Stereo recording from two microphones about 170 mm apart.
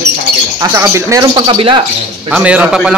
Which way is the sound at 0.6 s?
15° right (ahead or behind).